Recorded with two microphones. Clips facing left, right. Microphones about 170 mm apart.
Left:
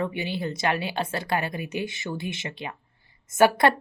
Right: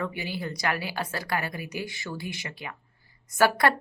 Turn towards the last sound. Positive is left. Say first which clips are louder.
# left 3 dB
turn(degrees=25)  # may be behind; listen again after turning